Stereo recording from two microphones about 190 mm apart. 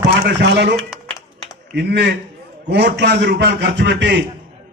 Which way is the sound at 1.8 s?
60° right (ahead or behind).